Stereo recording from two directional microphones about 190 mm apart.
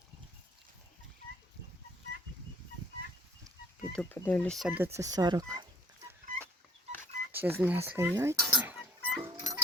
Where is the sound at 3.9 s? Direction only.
5° left (ahead or behind); by 5.7 s 20° right (ahead or behind).